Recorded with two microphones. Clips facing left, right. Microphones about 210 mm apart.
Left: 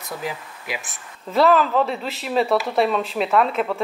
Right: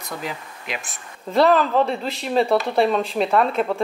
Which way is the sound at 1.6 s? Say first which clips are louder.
Right 1 dB; 30° right (ahead or behind).